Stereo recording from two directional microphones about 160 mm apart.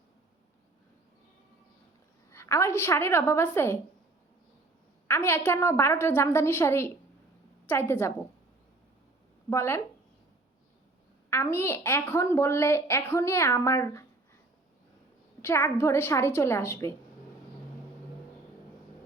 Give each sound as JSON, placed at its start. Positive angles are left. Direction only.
{"t": 2.3, "sound": "a woman's voice", "side_deg": 15}
{"t": 5.0, "sound": "a woman's voice", "side_deg": 15}
{"t": 9.5, "sound": "a woman's voice", "side_deg": 15}
{"t": 11.3, "sound": "a woman's voice", "side_deg": 15}
{"t": 15.4, "sound": "a woman's voice", "side_deg": 15}